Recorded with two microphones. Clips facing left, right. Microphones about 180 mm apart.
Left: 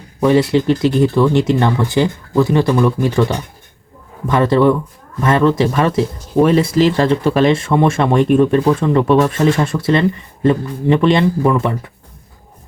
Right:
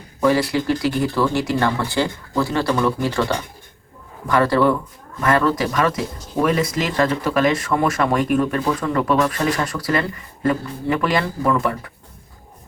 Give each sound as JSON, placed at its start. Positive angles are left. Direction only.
{"t": 0.2, "sound": "speech", "side_deg": 25}